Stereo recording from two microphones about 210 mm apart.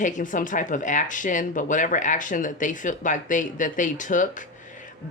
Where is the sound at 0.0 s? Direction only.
40° left (ahead or behind).